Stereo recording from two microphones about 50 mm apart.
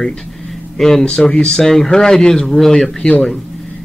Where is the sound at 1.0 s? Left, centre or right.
Centre.